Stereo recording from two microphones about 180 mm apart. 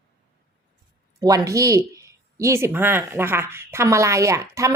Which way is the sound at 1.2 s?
20° right (ahead or behind).